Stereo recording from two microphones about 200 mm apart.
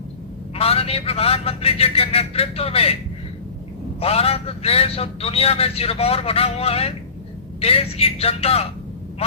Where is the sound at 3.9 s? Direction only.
30° left (ahead or behind).